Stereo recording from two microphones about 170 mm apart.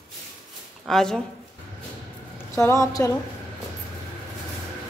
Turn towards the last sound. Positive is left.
turn(degrees=20)  # may be behind; listen again after turning